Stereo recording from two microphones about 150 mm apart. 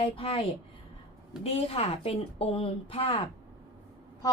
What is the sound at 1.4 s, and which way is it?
A woman's voice, 40° left (ahead or behind).